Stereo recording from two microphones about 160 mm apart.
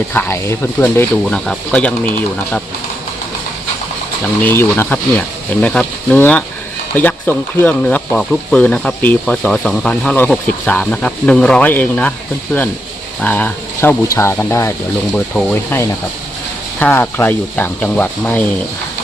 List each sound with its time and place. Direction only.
0.1 s speech: 15° left (ahead or behind)
4.2 s speech: 10° left (ahead or behind)
13.2 s speech: 10° left (ahead or behind)